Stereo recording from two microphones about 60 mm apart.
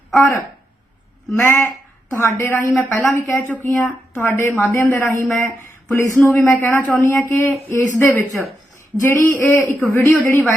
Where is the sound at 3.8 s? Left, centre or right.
Left.